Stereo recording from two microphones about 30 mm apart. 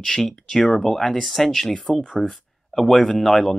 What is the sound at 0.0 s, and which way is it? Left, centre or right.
Speech, centre.